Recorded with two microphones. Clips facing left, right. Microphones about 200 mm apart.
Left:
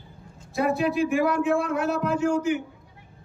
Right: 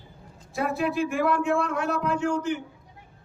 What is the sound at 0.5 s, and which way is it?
Speech, centre (ahead or behind).